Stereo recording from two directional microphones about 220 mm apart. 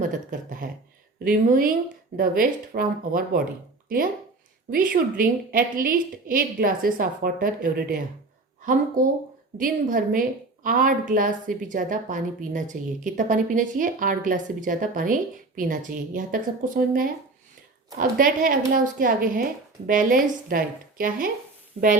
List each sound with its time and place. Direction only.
0.0 s a woman's voice: 35° right (ahead or behind)
9.6 s a woman's voice: 40° right (ahead or behind)